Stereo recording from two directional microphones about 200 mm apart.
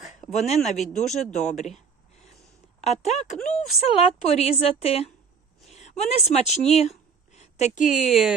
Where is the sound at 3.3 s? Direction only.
5° left (ahead or behind).